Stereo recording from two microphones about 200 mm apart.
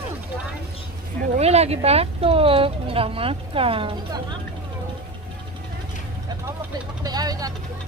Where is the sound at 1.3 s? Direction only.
30° right (ahead or behind).